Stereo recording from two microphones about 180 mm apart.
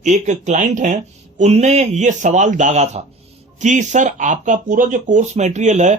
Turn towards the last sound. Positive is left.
turn(degrees=-40)  # may be behind; listen again after turning